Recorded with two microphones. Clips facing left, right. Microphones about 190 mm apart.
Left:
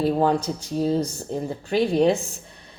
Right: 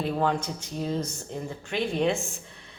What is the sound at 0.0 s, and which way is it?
Speech, 35° left (ahead or behind).